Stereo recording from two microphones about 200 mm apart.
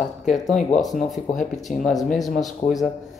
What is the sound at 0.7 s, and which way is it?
Speech, centre (ahead or behind).